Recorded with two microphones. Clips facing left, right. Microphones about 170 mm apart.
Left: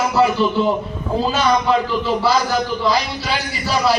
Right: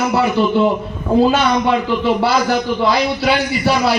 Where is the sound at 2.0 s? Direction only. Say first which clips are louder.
Right 3 dB; 60° right (ahead or behind).